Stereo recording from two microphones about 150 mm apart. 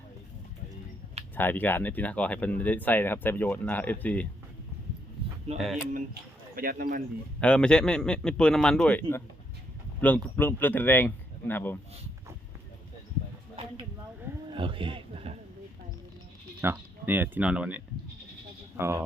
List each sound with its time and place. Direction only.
1.4 s speech: 10° left (ahead or behind)
5.5 s speech: centre (ahead or behind)
6.6 s speech: 70° right (ahead or behind)
7.4 s speech: 5° left (ahead or behind)
14.5 s a sound: 35° right (ahead or behind)
16.6 s speech: 15° right (ahead or behind)